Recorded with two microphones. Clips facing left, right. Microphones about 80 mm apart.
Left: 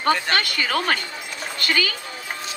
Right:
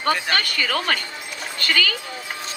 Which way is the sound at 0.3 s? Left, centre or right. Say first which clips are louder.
Left 1 dB; left.